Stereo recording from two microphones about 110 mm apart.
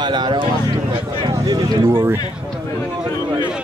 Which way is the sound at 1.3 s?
35° right (ahead or behind).